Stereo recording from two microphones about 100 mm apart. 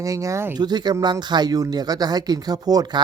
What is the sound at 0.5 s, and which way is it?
Speech, 45° right (ahead or behind).